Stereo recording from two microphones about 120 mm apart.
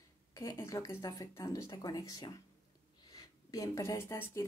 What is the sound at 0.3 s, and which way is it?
Speech, 25° left (ahead or behind).